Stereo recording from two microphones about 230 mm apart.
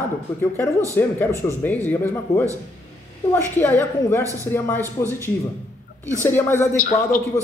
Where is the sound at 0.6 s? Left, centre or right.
Centre.